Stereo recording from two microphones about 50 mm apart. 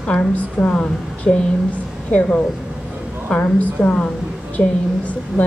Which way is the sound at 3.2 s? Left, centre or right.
Left.